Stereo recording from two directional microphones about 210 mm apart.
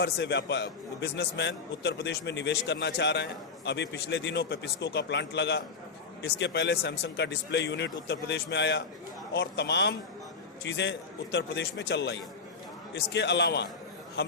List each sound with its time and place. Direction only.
0.0 s a man's voice: 55° left (ahead or behind)